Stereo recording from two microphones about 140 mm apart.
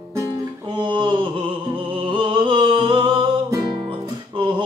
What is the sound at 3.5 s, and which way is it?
Music, 25° right (ahead or behind).